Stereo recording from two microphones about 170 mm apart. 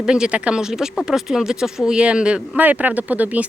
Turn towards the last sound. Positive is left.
turn(degrees=-10)  # may be behind; listen again after turning